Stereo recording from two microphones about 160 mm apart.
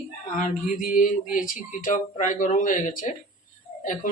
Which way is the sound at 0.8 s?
60° left (ahead or behind).